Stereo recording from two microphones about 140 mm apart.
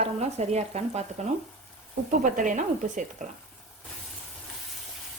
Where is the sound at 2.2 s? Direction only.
70° right (ahead or behind).